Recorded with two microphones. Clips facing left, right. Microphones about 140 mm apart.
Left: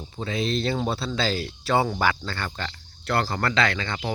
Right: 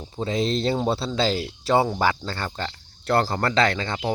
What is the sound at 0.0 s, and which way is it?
Speech, 30° right (ahead or behind).